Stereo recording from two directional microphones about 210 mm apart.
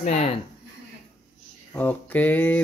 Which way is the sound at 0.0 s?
35° left (ahead or behind).